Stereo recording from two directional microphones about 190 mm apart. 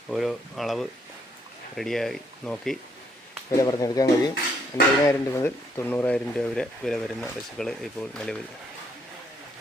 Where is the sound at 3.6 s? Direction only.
20° left (ahead or behind).